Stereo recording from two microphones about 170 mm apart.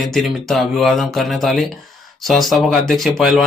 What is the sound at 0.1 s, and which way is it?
Speech, centre (ahead or behind).